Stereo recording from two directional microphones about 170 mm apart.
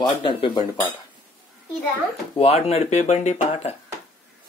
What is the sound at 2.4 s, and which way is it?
Speech, 35° left (ahead or behind).